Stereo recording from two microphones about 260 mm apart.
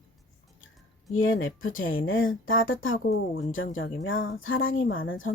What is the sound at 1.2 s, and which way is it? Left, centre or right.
Speech, left.